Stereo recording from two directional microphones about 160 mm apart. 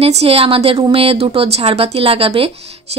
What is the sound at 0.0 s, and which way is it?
Speech, 40° right (ahead or behind).